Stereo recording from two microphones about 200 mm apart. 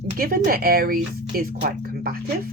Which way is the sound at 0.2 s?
45° right (ahead or behind).